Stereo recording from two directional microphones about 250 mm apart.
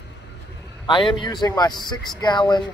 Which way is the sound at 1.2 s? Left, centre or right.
Centre.